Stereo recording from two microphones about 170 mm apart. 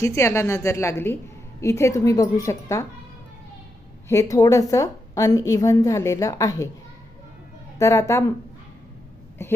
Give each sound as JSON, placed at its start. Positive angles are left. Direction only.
{"t": 0.0, "sound": "a woman's voice", "side_deg": 15}
{"t": 4.1, "sound": "a woman's voice", "side_deg": 20}
{"t": 7.8, "sound": "a woman's voice", "side_deg": 15}
{"t": 9.4, "sound": "a woman's voice", "side_deg": 15}